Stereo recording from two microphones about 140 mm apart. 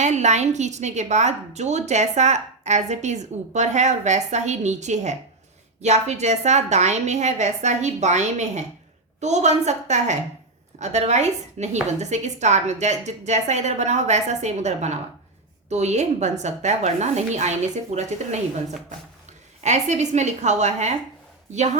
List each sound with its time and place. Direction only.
0.0 s a woman's voice: 55° right (ahead or behind)
19.6 s a woman's voice: 55° right (ahead or behind)